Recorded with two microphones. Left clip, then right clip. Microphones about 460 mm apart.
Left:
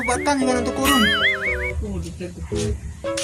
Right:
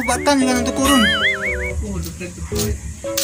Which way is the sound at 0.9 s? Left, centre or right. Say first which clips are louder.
Right 2 dB; centre.